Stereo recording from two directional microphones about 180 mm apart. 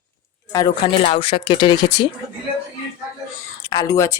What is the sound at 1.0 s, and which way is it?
Speech, 30° left (ahead or behind).